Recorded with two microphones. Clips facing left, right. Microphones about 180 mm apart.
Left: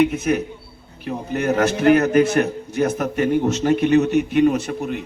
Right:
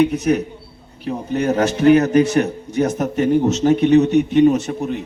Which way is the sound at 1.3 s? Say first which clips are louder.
Right 1 dB; centre (ahead or behind).